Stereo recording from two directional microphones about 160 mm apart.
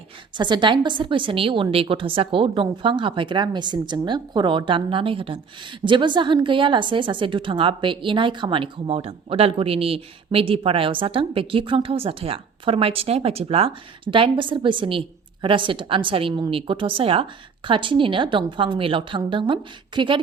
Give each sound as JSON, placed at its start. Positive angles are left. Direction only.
{"t": 0.3, "sound": "a woman's voice", "side_deg": -30}